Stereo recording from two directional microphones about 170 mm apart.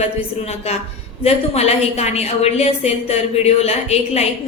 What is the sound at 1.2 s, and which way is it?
A woman's voice, 40° left (ahead or behind).